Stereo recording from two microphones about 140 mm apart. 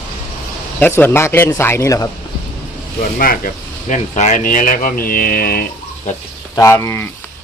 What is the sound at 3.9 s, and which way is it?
Speech, 55° left (ahead or behind).